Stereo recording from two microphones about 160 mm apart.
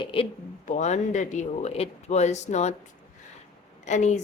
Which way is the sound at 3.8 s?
45° left (ahead or behind).